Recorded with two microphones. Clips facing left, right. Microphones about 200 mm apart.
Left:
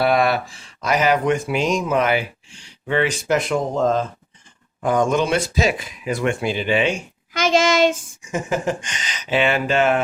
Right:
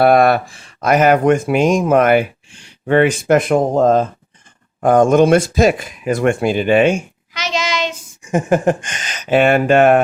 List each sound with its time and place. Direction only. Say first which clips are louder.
0.0 s speech: right 7 dB; 50° right (ahead or behind)
7.3 s child singing: left 5 dB; 50° left (ahead or behind)
8.2 s speech: right 9 dB; 55° right (ahead or behind)